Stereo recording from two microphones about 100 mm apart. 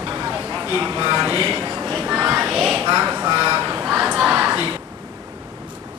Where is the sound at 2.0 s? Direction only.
10° right (ahead or behind).